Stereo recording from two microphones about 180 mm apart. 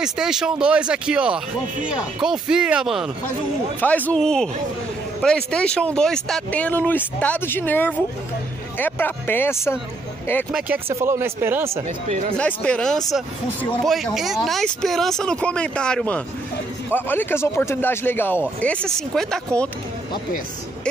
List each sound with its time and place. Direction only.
0.0 s speech: 5° right (ahead or behind)
3.8 s speech: 10° left (ahead or behind)
11.0 s speech: 15° right (ahead or behind)
12.1 s speech: 35° right (ahead or behind)
12.4 s speech: 5° left (ahead or behind)